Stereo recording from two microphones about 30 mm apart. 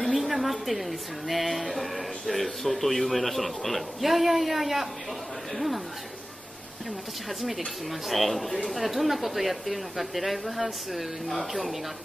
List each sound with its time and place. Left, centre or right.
0.0 s a woman's voice: centre
7.2 s a woman's voice: centre